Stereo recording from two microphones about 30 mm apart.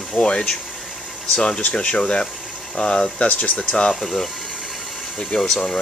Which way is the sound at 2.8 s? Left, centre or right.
Left.